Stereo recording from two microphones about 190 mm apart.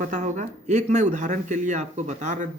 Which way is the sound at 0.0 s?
45° right (ahead or behind).